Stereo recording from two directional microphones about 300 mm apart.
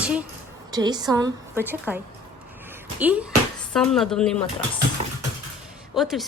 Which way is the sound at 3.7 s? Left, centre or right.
Centre.